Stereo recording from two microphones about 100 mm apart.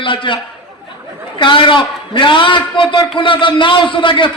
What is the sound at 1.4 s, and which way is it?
A man's voice, 55° left (ahead or behind).